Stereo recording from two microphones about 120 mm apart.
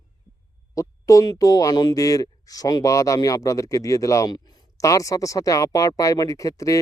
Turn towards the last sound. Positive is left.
turn(degrees=30)  # may be behind; listen again after turning